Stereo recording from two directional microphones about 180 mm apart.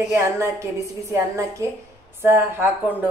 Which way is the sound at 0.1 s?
15° right (ahead or behind).